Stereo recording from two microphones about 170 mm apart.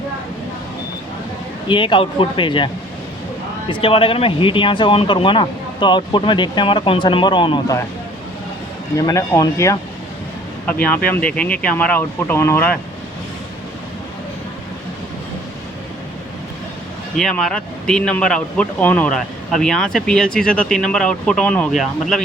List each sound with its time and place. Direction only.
1.6 s speech: 30° left (ahead or behind)
3.7 s speech: 30° left (ahead or behind)
9.0 s speech: 20° left (ahead or behind)
17.2 s speech: 5° left (ahead or behind)